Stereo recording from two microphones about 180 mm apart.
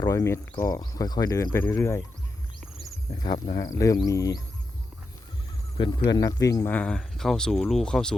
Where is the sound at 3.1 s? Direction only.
25° left (ahead or behind).